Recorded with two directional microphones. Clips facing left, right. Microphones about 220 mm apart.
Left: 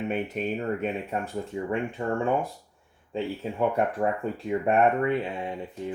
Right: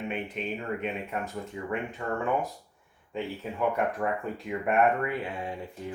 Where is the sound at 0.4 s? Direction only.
45° left (ahead or behind).